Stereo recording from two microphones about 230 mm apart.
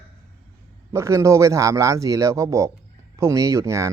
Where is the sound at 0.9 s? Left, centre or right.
Centre.